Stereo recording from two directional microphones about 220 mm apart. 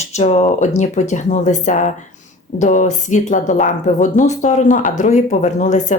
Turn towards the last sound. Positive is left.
turn(degrees=35)  # may be behind; listen again after turning